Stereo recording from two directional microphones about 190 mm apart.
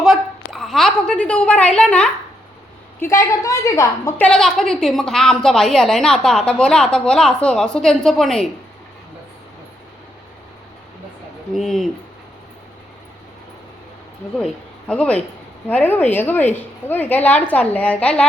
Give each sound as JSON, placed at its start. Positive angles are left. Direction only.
{"t": 0.0, "sound": "a sound", "side_deg": 0}
{"t": 3.0, "sound": "a woman's voice", "side_deg": 15}
{"t": 4.3, "sound": "a woman's voice", "side_deg": 0}
{"t": 11.5, "sound": "a woman's voice", "side_deg": 0}
{"t": 14.3, "sound": "a woman's voice", "side_deg": 5}